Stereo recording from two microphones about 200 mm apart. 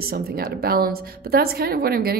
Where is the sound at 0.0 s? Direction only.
50° right (ahead or behind).